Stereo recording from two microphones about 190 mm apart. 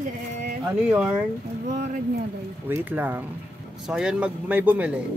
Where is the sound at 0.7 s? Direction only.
5° right (ahead or behind).